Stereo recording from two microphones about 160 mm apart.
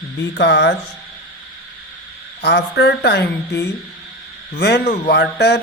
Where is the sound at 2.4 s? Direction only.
90° left.